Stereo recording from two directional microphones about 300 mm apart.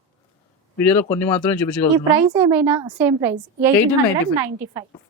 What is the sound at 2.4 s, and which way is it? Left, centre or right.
A woman's voice, centre.